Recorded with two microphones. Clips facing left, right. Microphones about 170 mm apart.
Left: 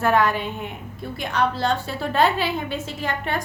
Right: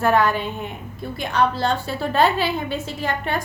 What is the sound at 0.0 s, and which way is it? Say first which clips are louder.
A woman's voice: right 1 dB; 35° right (ahead or behind).